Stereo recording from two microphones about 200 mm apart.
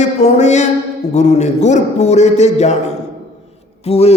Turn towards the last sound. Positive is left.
turn(degrees=30)  # may be behind; listen again after turning